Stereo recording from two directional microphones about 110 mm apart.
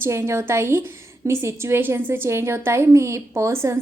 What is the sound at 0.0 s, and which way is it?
A woman's voice, 20° right (ahead or behind).